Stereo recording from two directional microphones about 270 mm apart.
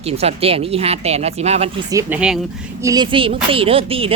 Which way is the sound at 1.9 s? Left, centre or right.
Centre.